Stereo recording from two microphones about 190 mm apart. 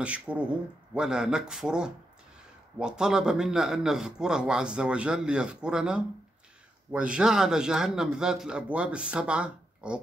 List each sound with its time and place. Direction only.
0.0 s a man's voice: 5° right (ahead or behind)